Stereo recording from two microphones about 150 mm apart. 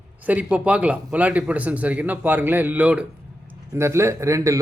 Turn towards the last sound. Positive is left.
turn(degrees=-20)  # may be behind; listen again after turning